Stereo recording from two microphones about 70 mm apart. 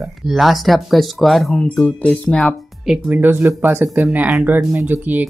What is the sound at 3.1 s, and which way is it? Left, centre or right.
Speech, right.